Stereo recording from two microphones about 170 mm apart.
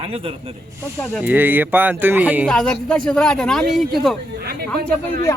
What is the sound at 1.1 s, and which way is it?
Speech, 10° right (ahead or behind).